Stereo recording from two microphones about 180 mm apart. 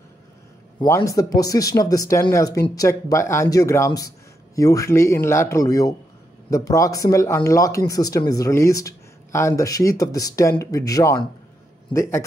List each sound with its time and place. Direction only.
0.8 s speech: 15° left (ahead or behind)